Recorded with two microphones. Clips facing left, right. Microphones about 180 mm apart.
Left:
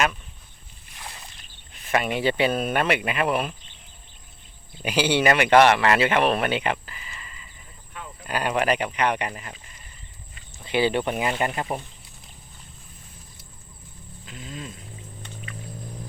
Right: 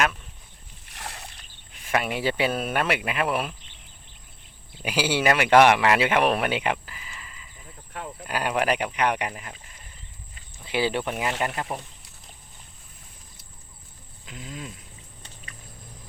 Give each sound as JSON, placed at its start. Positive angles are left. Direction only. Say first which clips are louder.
{"t": 0.9, "sound": "a sound", "louder": "right 3 dB", "side_deg": -75}
{"t": 1.7, "sound": "speech", "louder": "left 2 dB", "side_deg": -5}
{"t": 4.8, "sound": "speech", "louder": "left 3 dB", "side_deg": -5}
{"t": 10.6, "sound": "speech", "louder": "left 3 dB", "side_deg": -5}
{"t": 14.3, "sound": "speech", "louder": "even", "side_deg": -15}